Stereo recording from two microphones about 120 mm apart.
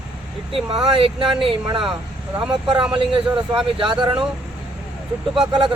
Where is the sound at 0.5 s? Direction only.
45° right (ahead or behind).